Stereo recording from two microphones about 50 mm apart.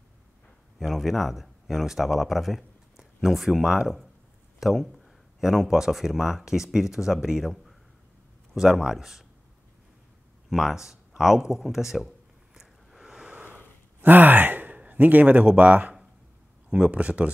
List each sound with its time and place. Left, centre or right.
0.7 s speech: centre
4.6 s a sound: centre
5.4 s speech: centre
10.5 s speech: centre
12.5 s a sound: centre
13.3 s sigh: right
14.8 s a man's voice: right